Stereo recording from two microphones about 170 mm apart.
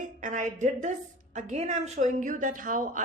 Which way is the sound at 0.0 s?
50° right (ahead or behind).